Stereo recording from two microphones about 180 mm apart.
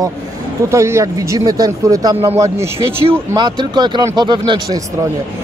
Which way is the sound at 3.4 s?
25° right (ahead or behind).